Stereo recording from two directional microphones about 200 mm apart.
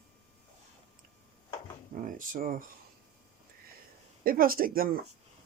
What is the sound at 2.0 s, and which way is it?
Speech, 45° right (ahead or behind).